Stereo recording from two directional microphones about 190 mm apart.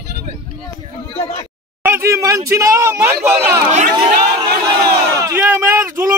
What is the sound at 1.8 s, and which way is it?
Speech, 15° right (ahead or behind).